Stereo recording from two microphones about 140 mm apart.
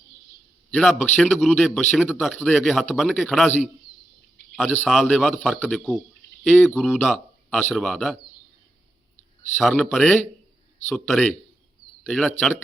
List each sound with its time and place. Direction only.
0.7 s a man's voice: 5° left (ahead or behind)
1.4 s speech: centre (ahead or behind)
4.5 s a man's voice: 10° left (ahead or behind)
6.7 s speech: centre (ahead or behind)
9.6 s a man's voice: 5° left (ahead or behind)